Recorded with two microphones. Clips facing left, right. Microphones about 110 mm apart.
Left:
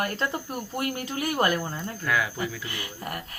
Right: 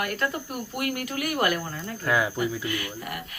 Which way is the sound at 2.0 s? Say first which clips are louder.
Right 3 dB; 25° right (ahead or behind).